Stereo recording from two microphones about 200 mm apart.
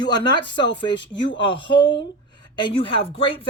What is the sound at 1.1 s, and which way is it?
Speech, 65° left (ahead or behind).